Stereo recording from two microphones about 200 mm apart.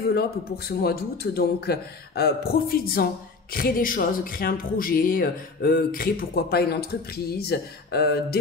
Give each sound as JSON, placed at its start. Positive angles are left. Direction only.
{"t": 0.7, "sound": "speech", "side_deg": 50}